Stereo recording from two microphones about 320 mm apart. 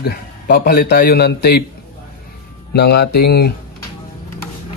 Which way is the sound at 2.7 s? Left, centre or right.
Left.